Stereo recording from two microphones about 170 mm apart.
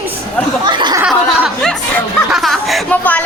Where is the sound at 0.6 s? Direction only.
25° right (ahead or behind).